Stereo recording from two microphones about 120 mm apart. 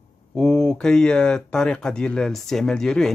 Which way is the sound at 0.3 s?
5° left (ahead or behind).